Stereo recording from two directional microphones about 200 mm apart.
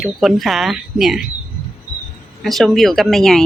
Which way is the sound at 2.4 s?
Centre (ahead or behind).